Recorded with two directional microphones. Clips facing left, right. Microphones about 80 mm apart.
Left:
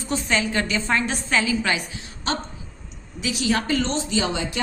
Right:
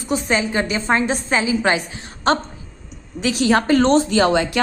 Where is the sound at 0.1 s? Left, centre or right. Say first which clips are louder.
Right 4 dB; right.